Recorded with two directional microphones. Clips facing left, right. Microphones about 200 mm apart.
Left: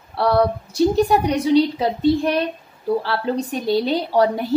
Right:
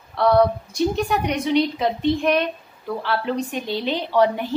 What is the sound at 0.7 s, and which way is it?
A woman's voice, 35° left (ahead or behind).